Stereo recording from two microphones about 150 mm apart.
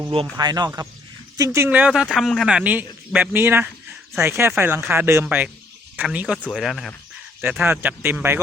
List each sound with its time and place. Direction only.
0.3 s a man's voice: 25° right (ahead or behind); by 6.9 s centre (ahead or behind)
7.4 s a man's voice: 10° right (ahead or behind)